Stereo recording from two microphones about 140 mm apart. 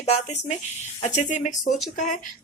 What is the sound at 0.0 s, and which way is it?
Speech, 50° left (ahead or behind).